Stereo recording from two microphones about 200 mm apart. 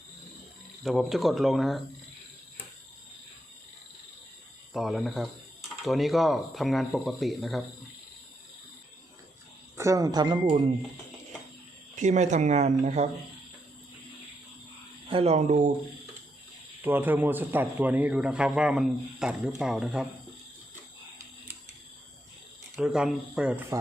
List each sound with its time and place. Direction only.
0.8 s a man's voice: centre (ahead or behind)
4.7 s a man's voice: centre (ahead or behind)
9.7 s speech: 15° right (ahead or behind)
11.9 s speech: 35° right (ahead or behind)
15.1 s speech: 30° right (ahead or behind)
16.8 s a man's voice: 10° right (ahead or behind)
22.7 s a man's voice: 5° right (ahead or behind)